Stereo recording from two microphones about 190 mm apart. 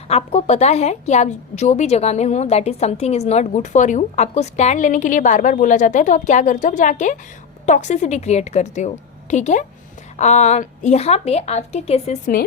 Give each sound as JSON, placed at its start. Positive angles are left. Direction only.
{"t": 0.1, "sound": "a woman's voice", "side_deg": 35}